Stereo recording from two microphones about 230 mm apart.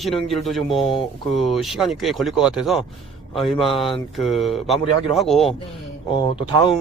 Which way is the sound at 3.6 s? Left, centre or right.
Left.